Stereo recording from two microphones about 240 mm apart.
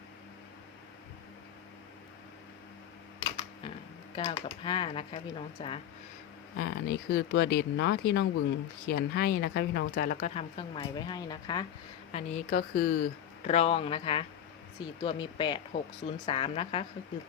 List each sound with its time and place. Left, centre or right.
3.2 s camera: centre
4.1 s speech: left
6.6 s speech: left; by 11.6 s centre
12.1 s speech: left
13.4 s speech: left